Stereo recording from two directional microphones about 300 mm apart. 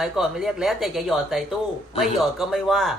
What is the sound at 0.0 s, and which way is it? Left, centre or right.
Speech, centre.